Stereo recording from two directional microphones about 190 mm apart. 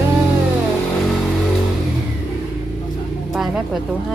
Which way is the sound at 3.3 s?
Centre (ahead or behind).